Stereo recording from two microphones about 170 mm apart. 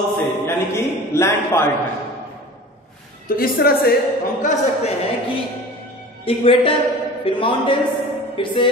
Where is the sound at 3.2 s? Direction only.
60° left (ahead or behind).